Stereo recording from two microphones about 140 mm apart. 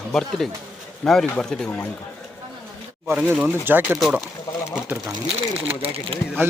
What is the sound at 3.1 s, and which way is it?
Speech, 10° right (ahead or behind).